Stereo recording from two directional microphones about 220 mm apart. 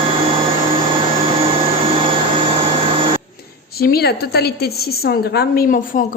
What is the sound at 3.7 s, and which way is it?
A woman's voice, 45° left (ahead or behind).